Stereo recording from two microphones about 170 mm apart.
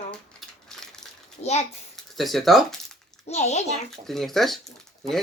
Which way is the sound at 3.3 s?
40° left (ahead or behind).